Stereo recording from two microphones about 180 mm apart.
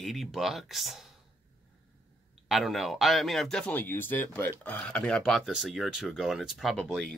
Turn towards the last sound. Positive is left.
turn(degrees=0)  # may be behind; listen again after turning